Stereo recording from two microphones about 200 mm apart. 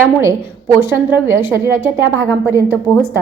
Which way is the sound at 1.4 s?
10° right (ahead or behind).